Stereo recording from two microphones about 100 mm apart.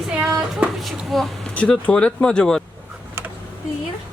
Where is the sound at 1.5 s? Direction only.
10° left (ahead or behind).